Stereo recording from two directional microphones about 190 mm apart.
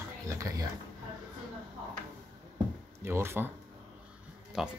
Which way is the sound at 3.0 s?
15° right (ahead or behind).